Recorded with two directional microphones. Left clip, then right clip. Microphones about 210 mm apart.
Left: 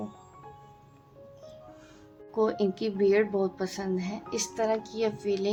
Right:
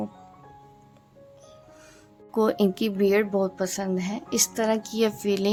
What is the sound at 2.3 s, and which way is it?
Speech, 50° right (ahead or behind).